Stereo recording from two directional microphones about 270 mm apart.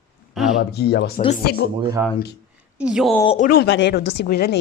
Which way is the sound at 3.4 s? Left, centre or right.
Left.